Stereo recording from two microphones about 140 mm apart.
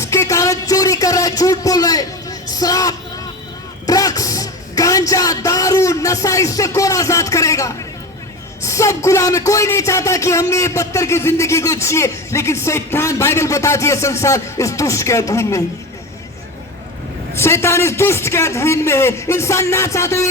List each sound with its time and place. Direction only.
0.0 s speech: 20° left (ahead or behind)
17.3 s speech: 20° left (ahead or behind)